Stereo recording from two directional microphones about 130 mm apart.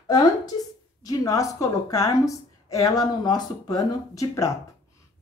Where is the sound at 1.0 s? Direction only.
25° left (ahead or behind).